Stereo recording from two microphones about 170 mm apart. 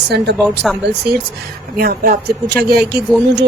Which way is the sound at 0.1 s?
80° right.